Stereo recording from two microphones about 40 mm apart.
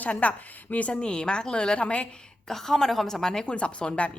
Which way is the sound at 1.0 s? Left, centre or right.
Left.